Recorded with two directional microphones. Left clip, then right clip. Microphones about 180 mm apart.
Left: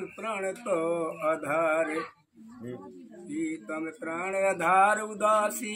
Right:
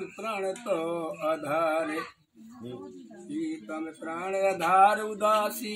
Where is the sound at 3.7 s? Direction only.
10° left (ahead or behind).